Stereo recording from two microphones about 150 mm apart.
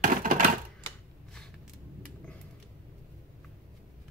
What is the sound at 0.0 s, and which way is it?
Typewriter, 65° right (ahead or behind).